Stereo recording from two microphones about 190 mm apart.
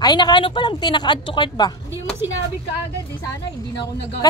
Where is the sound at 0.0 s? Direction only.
20° left (ahead or behind).